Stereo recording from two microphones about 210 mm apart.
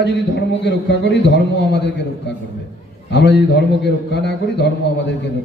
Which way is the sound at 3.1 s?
55° left (ahead or behind).